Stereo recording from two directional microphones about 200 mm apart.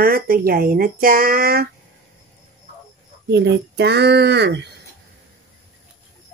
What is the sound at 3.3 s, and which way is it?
Speech, 55° right (ahead or behind).